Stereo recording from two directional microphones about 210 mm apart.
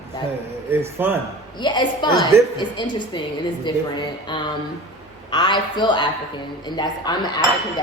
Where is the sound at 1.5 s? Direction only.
20° left (ahead or behind).